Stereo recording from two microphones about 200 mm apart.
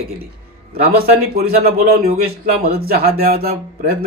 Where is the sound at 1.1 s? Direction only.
50° right (ahead or behind).